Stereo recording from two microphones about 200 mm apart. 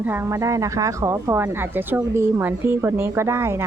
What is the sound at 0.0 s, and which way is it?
Speech, 10° right (ahead or behind).